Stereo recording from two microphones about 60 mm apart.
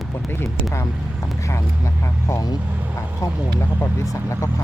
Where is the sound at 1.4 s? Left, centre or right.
Left.